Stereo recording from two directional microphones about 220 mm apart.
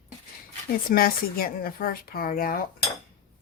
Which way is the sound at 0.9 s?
40° left (ahead or behind).